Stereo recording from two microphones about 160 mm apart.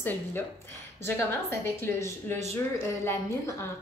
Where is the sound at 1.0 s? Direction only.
15° left (ahead or behind).